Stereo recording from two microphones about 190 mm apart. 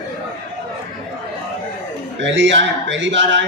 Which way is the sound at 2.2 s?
75° right (ahead or behind).